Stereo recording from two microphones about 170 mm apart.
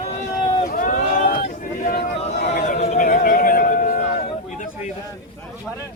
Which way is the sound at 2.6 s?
40° left (ahead or behind).